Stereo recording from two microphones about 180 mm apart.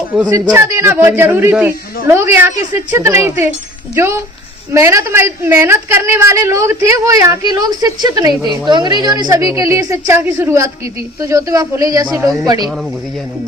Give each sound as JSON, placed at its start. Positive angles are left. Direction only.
{"t": 0.1, "sound": "a woman's voice", "side_deg": -15}